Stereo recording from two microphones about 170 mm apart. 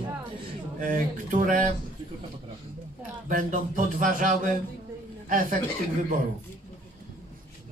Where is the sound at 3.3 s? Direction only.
50° right (ahead or behind).